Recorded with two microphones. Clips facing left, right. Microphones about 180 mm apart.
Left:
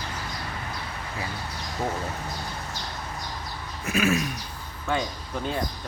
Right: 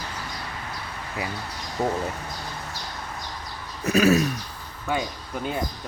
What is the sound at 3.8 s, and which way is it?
Speech, 40° right (ahead or behind).